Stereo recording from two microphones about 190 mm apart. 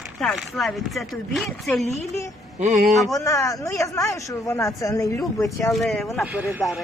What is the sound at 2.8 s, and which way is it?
Speech, centre (ahead or behind).